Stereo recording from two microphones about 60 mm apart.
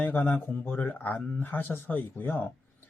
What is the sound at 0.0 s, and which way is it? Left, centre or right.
Speech, left.